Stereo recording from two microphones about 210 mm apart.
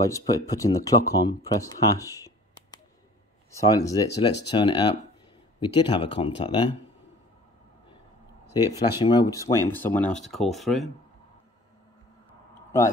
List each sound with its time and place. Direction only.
0.0 s speech: 15° left (ahead or behind)
8.5 s speech: 20° left (ahead or behind); by 10.9 s centre (ahead or behind)